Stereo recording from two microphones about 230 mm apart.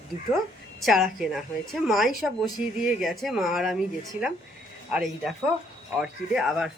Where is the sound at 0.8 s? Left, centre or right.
Centre.